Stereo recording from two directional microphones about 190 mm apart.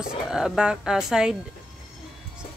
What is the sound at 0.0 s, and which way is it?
Speech, 5° right (ahead or behind).